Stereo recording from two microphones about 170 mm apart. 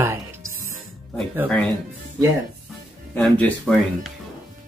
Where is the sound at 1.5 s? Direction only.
5° left (ahead or behind).